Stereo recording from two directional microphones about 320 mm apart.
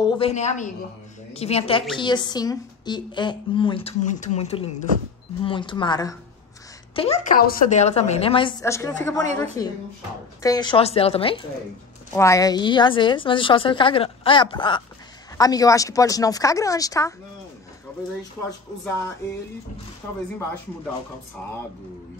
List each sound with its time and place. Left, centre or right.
0.0 s a woman's voice: centre
10.4 s a woman's voice: centre